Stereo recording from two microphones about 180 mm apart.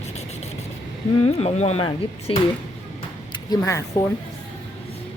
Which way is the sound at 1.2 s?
35° left (ahead or behind).